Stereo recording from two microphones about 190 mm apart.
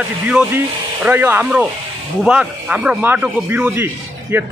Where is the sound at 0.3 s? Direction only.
5° right (ahead or behind).